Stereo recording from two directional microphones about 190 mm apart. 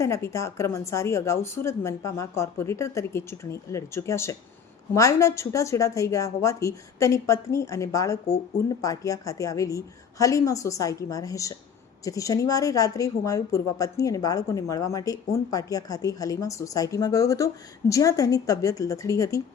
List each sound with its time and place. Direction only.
0.0 s a woman's voice: 15° left (ahead or behind)